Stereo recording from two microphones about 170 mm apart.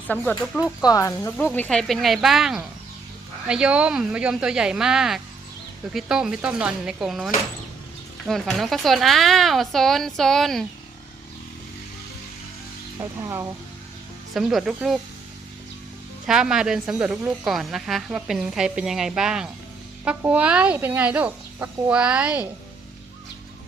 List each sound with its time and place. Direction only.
0.1 s speech: 10° left (ahead or behind)
0.6 s speech: 20° left (ahead or behind)
1.5 s a woman's voice: 5° left (ahead or behind)
8.3 s a woman's voice: centre (ahead or behind)
13.0 s speech: 20° right (ahead or behind)
14.3 s a woman's voice: centre (ahead or behind)
16.2 s a woman's voice: 5° right (ahead or behind)